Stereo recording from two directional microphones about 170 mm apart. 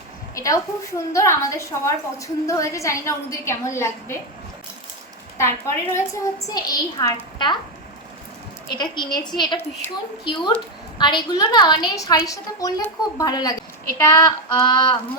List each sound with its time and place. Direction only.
0.3 s a woman's voice: 20° left (ahead or behind)
5.4 s a woman's voice: 15° left (ahead or behind)
8.8 s a woman's voice: 25° left (ahead or behind)